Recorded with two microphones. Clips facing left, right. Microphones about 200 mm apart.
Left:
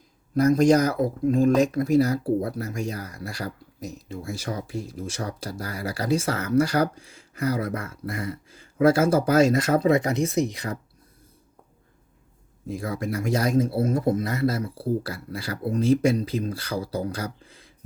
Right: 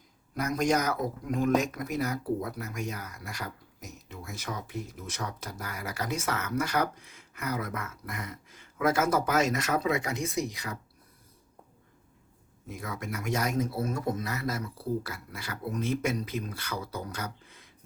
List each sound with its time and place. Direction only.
0.3 s speech: 30° left (ahead or behind)
12.6 s speech: 30° left (ahead or behind)